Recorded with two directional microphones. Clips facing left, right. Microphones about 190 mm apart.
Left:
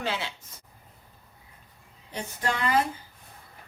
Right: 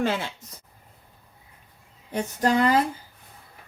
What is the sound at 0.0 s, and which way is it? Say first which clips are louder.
Speech: right 6 dB; 50° right (ahead or behind).